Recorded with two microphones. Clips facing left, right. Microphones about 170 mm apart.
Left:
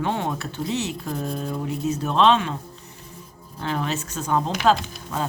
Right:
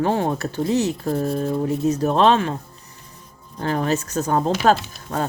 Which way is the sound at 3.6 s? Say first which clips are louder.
Right 5 dB; 40° right (ahead or behind).